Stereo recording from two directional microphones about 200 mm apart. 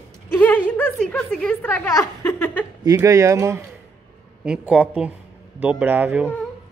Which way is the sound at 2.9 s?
15° right (ahead or behind).